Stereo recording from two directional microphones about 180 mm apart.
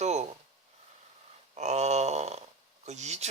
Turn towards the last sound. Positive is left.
turn(degrees=-40)  # may be behind; listen again after turning